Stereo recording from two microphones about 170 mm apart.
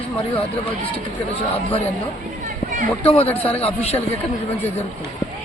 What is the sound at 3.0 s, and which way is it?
Speech, 35° left (ahead or behind).